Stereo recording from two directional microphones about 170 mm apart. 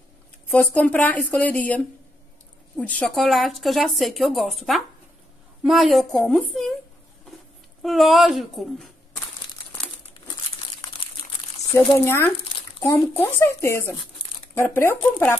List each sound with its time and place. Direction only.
0.5 s speech: 10° left (ahead or behind)
2.9 s speech: 5° left (ahead or behind)
7.8 s speech: centre (ahead or behind)
11.7 s speech: 15° left (ahead or behind)